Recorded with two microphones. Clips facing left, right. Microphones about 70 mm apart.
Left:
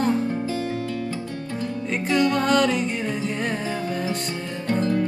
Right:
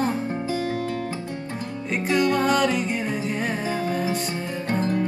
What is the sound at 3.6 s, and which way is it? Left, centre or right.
Music, right.